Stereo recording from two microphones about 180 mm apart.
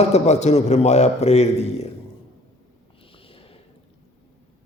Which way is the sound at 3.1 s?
30° left (ahead or behind).